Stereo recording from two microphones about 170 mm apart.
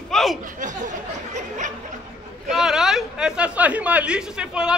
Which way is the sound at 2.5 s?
5° right (ahead or behind).